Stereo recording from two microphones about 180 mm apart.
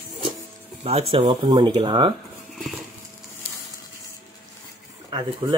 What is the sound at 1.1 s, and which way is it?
Speech, 25° right (ahead or behind).